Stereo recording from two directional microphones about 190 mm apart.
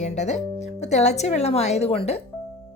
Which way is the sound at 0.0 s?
35° left (ahead or behind).